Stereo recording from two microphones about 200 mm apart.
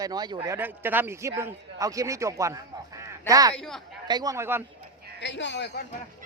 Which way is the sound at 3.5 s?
Centre (ahead or behind).